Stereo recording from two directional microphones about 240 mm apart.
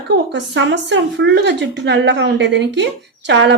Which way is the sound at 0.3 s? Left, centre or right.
Right.